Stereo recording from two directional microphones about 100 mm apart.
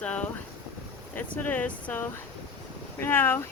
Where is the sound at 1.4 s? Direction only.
15° left (ahead or behind).